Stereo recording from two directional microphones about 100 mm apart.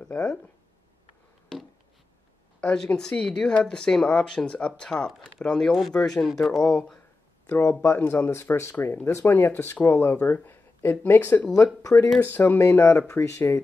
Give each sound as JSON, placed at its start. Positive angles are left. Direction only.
{"t": 2.6, "sound": "speech", "side_deg": 10}
{"t": 7.4, "sound": "speech", "side_deg": 20}
{"t": 11.5, "sound": "speech", "side_deg": 35}
{"t": 12.2, "sound": "speech", "side_deg": 20}